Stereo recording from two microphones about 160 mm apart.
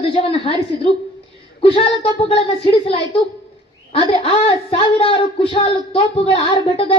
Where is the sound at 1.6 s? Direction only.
35° left (ahead or behind).